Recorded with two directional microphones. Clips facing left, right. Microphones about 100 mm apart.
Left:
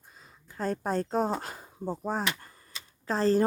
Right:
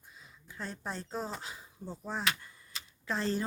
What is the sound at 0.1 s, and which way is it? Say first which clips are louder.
Speech: even; 45° left (ahead or behind).